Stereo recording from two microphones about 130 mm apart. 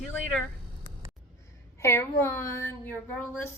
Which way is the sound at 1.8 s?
20° left (ahead or behind).